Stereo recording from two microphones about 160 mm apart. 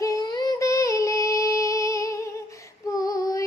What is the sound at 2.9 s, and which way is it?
Female singing, 20° left (ahead or behind).